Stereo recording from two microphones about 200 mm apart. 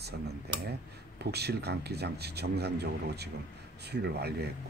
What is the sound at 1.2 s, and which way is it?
Speech, 55° right (ahead or behind).